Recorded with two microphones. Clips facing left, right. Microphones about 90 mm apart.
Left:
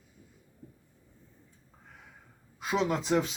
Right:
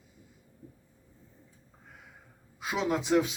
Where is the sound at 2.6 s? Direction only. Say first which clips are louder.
Left 1 dB; 5° right (ahead or behind).